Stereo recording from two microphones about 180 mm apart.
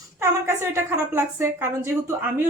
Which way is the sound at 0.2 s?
15° right (ahead or behind).